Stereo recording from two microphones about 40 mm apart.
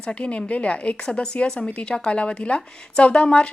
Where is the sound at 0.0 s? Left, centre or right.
Left.